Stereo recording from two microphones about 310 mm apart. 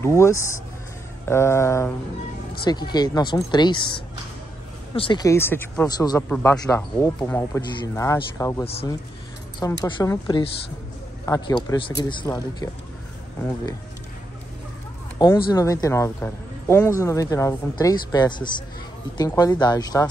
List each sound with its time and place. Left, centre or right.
0.0 s speech: centre
15.1 s speech: centre